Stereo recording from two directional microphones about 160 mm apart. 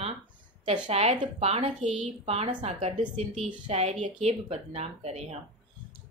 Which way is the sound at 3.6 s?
40° right (ahead or behind).